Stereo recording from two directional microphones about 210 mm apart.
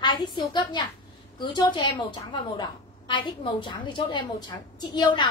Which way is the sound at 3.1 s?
20° left (ahead or behind).